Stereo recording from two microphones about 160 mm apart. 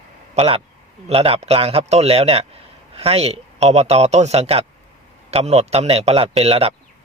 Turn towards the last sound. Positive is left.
turn(degrees=-40)  # may be behind; listen again after turning